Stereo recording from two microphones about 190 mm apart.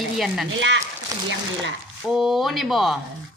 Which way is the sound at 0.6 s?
70° right (ahead or behind).